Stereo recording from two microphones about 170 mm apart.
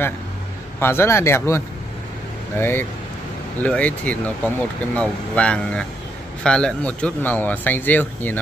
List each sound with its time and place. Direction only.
0.7 s speech: 15° left (ahead or behind)
2.6 s speech: 15° left (ahead or behind)